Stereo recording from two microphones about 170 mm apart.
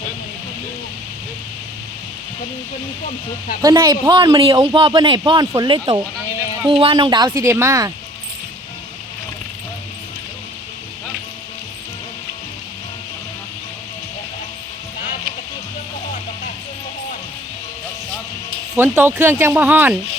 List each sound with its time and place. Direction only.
3.6 s speech: 20° right (ahead or behind)
18.8 s speech: 15° right (ahead or behind)